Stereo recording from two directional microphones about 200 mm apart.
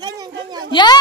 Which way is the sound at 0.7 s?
25° left (ahead or behind).